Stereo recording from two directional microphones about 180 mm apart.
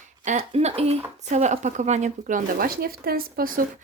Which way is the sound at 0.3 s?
35° right (ahead or behind).